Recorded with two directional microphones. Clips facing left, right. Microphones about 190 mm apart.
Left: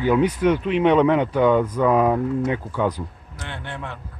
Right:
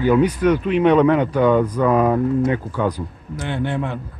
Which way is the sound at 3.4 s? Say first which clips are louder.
Right 10 dB; 10° right (ahead or behind).